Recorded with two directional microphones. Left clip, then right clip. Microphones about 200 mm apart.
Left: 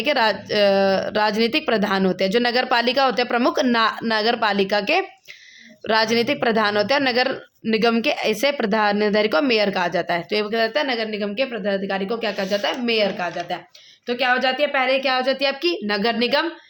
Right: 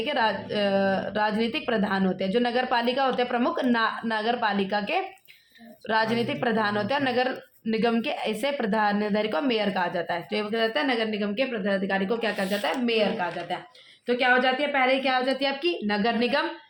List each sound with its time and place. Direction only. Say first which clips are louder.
0.0 s a woman's voice: left 6 dB; 45° left (ahead or behind)